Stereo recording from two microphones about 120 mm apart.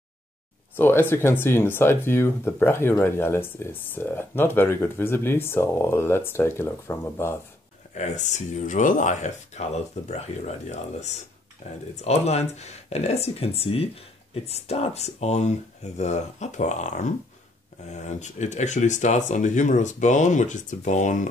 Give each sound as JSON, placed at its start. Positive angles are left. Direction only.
{"t": 0.7, "sound": "speech", "side_deg": 20}
{"t": 7.9, "sound": "speech", "side_deg": 75}
{"t": 17.8, "sound": "speech", "side_deg": 75}